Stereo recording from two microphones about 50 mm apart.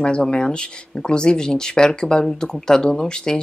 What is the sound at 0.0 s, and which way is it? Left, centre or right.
Speech, centre.